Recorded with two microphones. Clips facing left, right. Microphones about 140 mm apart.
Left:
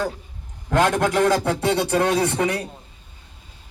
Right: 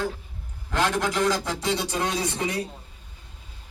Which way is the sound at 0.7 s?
55° left (ahead or behind).